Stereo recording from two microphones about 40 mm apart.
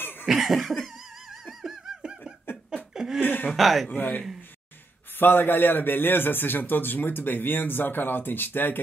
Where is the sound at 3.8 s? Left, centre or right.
Left.